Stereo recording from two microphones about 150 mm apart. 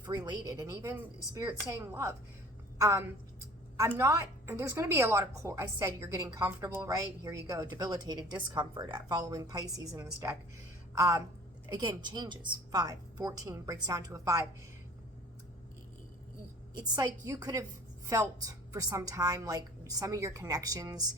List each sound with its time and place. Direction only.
0.3 s a woman's voice: 20° right (ahead or behind)
16.9 s a woman's voice: 25° right (ahead or behind)